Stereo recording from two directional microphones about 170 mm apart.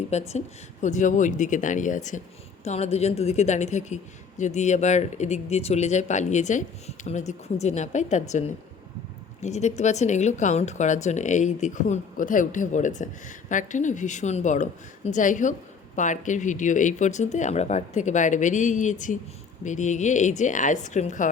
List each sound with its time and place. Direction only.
0.1 s speech: 40° left (ahead or behind)